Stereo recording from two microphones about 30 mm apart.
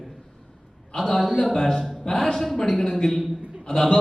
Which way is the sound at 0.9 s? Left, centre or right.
Centre.